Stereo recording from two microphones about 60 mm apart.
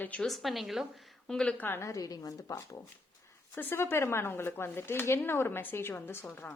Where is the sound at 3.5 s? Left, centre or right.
Left.